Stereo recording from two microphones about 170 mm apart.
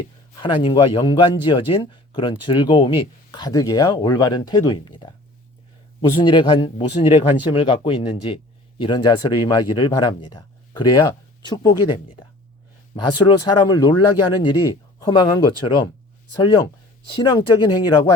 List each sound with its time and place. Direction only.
0.3 s speech: 30° left (ahead or behind)
13.0 s speech: 30° left (ahead or behind)
17.2 s speech: 25° left (ahead or behind)